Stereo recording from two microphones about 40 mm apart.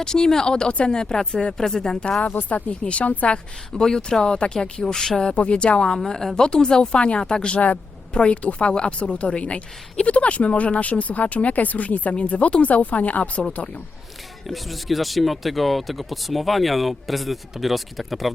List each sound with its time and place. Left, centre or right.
0.0 s speech: centre
2.3 s speech: left
3.3 s speech: centre
5.3 s speech: left
6.1 s speech: centre; by 13.4 s left
14.4 s speech: centre